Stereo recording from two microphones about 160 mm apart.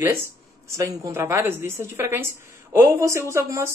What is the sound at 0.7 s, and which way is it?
Speech, 20° right (ahead or behind).